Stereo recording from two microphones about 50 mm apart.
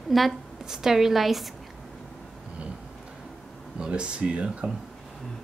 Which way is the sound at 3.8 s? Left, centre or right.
Right.